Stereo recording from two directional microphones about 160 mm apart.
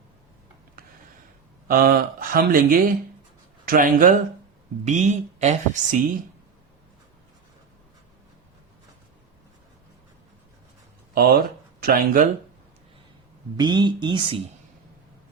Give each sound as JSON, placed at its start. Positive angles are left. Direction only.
{"t": 1.6, "sound": "speech", "side_deg": -65}
{"t": 11.1, "sound": "speech", "side_deg": -70}
{"t": 13.6, "sound": "speech", "side_deg": -25}